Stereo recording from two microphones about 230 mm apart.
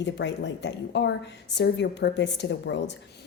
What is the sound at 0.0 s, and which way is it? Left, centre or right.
Speech, left.